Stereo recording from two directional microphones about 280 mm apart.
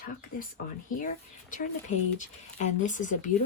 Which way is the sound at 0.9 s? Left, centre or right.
Left.